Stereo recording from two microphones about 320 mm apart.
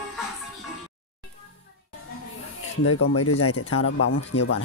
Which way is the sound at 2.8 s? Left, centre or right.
Left.